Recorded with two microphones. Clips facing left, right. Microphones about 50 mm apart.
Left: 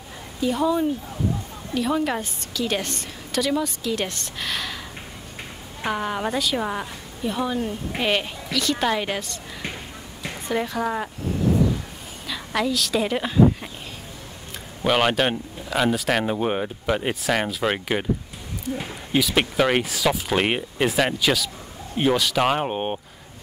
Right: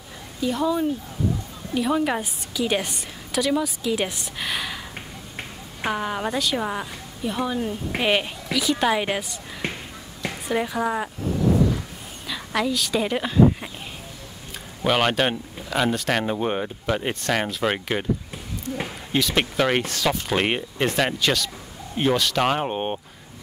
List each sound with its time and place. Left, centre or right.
0.4 s a woman's voice: centre
5.9 s a woman's voice: centre
10.5 s a woman's voice: centre
12.3 s speech: centre
14.8 s speech: centre
19.1 s speech: centre